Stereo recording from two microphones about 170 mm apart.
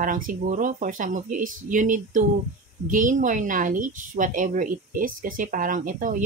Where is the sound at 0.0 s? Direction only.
55° right (ahead or behind).